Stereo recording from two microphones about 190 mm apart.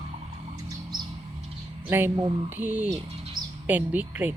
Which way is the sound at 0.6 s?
20° right (ahead or behind).